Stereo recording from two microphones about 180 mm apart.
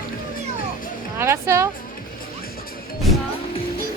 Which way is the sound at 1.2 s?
15° right (ahead or behind).